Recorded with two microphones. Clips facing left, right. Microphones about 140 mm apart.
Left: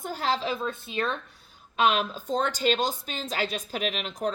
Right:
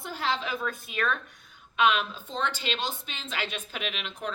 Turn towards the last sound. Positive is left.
turn(degrees=40)  # may be behind; listen again after turning